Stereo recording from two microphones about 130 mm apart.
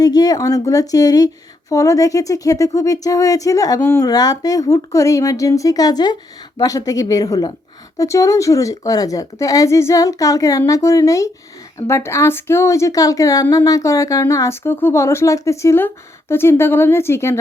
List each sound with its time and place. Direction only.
0.0 s a woman's voice: 30° left (ahead or behind)
4.0 s a woman's voice: 30° left (ahead or behind)